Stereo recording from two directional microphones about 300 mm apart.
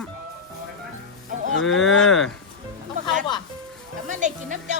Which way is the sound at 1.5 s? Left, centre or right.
Left.